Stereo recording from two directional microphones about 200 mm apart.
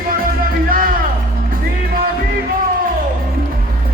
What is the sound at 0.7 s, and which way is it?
Music, 45° right (ahead or behind).